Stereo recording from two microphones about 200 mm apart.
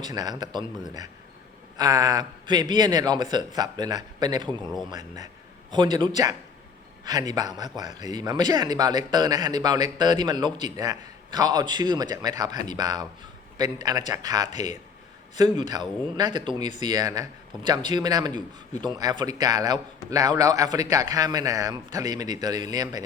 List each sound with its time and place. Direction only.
0.0 s a man's voice: 20° right (ahead or behind)
4.6 s speech: centre (ahead or behind)
4.9 s a man's voice: 20° right (ahead or behind)